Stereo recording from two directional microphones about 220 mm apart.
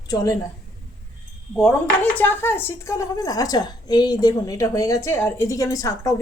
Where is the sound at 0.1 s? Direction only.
15° left (ahead or behind).